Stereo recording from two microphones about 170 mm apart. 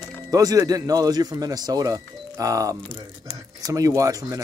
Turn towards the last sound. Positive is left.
turn(degrees=-20)  # may be behind; listen again after turning